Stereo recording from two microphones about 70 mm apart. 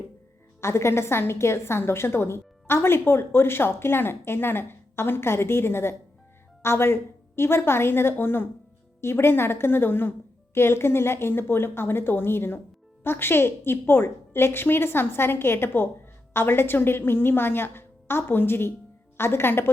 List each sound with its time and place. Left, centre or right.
0.6 s a woman's voice: left